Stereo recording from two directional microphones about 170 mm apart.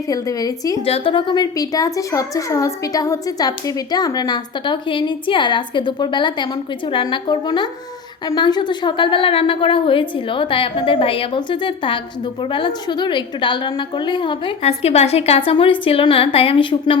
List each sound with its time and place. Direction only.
0.1 s a woman's voice: 20° left (ahead or behind)
0.9 s a woman's voice: 35° left (ahead or behind)